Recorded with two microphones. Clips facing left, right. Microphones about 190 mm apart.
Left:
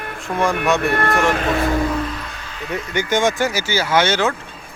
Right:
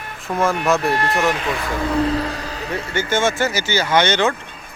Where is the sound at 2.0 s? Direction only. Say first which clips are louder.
Right 8 dB; 35° right (ahead or behind).